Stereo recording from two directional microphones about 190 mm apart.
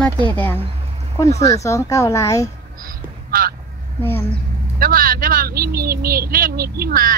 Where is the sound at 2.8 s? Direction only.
50° right (ahead or behind).